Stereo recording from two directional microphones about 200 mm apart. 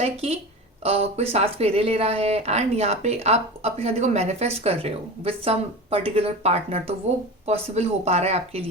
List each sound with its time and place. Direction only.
0.0 s speech: 30° right (ahead or behind)